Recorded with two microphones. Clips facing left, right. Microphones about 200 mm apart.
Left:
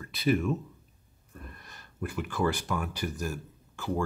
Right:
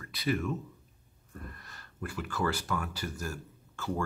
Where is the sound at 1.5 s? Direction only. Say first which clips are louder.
Left 4 dB; 20° left (ahead or behind).